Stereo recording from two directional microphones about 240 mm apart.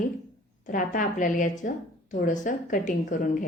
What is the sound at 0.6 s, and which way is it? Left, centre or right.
A woman's voice, left.